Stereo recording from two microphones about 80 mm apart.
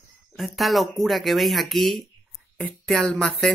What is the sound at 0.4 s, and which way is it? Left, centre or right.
Speech, centre.